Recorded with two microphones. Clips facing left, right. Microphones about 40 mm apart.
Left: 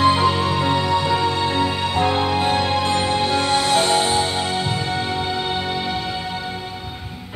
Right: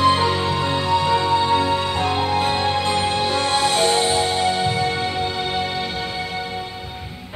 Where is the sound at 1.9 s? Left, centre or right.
Centre.